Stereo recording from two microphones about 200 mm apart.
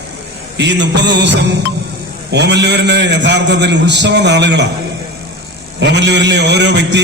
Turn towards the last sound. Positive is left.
turn(degrees=-60)  # may be behind; listen again after turning